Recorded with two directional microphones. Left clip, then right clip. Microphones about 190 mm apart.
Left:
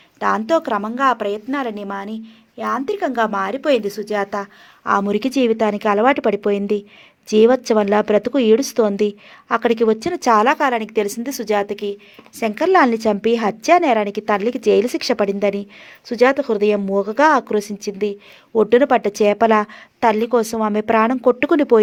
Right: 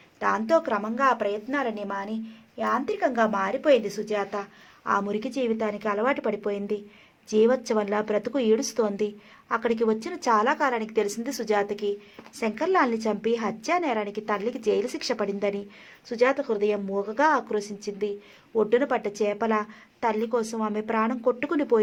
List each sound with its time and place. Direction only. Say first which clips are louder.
0.2 s a woman's voice: left 6 dB; 50° left (ahead or behind)